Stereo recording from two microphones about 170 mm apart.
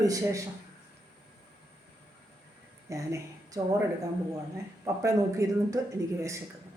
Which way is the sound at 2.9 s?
15° right (ahead or behind).